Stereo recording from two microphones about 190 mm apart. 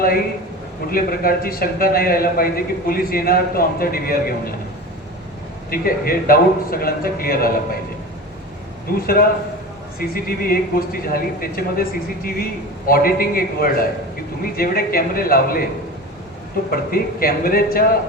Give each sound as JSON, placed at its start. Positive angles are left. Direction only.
{"t": 0.9, "sound": "a man's voice", "side_deg": 50}
{"t": 5.7, "sound": "a man's voice", "side_deg": 50}
{"t": 9.0, "sound": "a man's voice", "side_deg": 50}
{"t": 16.7, "sound": "a man's voice", "side_deg": 50}